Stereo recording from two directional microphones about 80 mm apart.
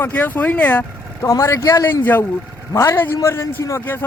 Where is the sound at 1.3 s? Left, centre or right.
Left.